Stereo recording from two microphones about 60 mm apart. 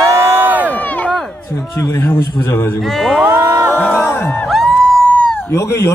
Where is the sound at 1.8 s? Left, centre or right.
Left.